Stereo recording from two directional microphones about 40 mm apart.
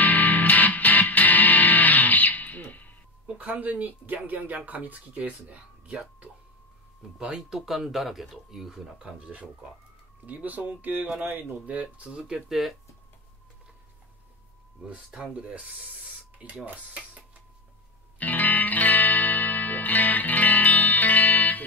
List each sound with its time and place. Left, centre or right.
0.0 s music: left
3.3 s speech: right
7.2 s speech: centre
10.2 s speech: right
11.2 s speech: right
11.6 s speech: right
12.4 s speech: centre
15.1 s speech: right
18.2 s music: left